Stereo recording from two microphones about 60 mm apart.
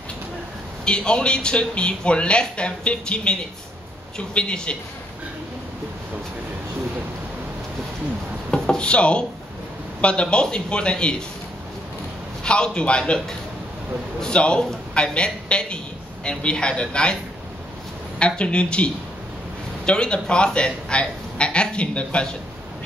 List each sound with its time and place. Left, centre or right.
0.8 s a man's voice: centre
8.5 s wood: centre
10.0 s speech: centre
12.4 s speech: centre
14.2 s speech: centre
18.2 s speech: centre
19.9 s speech: centre